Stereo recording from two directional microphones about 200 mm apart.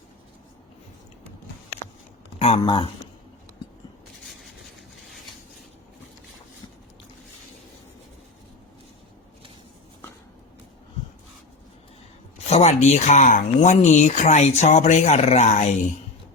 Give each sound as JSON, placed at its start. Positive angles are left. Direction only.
{"t": 2.4, "sound": "speech", "side_deg": 25}
{"t": 4.3, "sound": "a sound", "side_deg": 0}
{"t": 12.5, "sound": "speech", "side_deg": 35}